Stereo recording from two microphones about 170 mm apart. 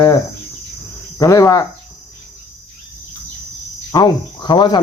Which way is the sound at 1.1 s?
20° left (ahead or behind).